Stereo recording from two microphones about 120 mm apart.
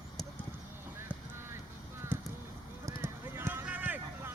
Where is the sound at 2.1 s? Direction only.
15° right (ahead or behind).